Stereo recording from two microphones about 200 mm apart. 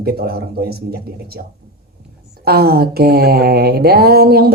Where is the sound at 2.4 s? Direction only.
50° right (ahead or behind).